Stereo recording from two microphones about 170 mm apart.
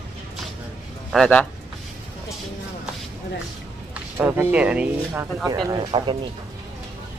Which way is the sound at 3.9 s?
10° right (ahead or behind).